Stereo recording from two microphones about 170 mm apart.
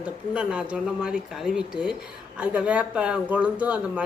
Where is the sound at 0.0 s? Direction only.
5° right (ahead or behind).